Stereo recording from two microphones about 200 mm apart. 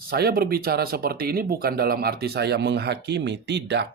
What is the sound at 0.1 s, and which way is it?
Speech, 50° right (ahead or behind).